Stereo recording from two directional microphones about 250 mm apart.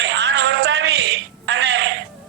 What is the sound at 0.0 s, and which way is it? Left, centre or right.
Music, right.